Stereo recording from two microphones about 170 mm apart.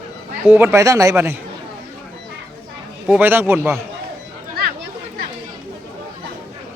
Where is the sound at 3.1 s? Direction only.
10° right (ahead or behind).